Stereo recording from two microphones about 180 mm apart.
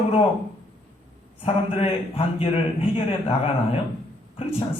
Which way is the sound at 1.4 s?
30° left (ahead or behind).